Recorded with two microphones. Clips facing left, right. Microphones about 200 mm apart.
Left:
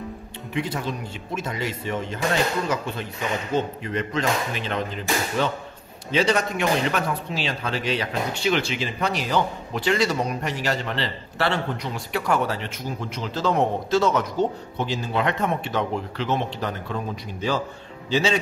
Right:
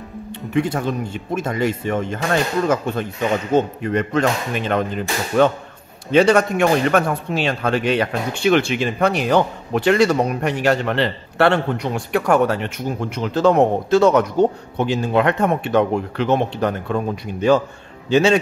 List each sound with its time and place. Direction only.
0.6 s a man's voice: 50° right (ahead or behind)